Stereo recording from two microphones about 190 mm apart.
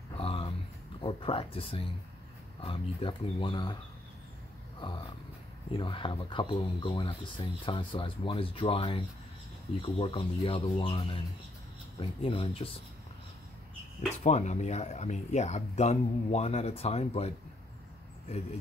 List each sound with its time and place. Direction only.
0.2 s a sound: 30° left (ahead or behind)
1.0 s speech: 30° left (ahead or behind)
4.7 s dog: 25° left (ahead or behind)
5.7 s speech: 25° left (ahead or behind)
14.2 s speech: 35° left (ahead or behind)